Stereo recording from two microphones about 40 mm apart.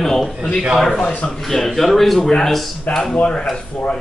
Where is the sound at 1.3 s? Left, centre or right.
Centre.